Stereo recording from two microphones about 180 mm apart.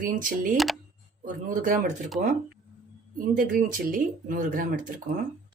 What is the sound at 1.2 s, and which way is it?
Speech, 45° right (ahead or behind).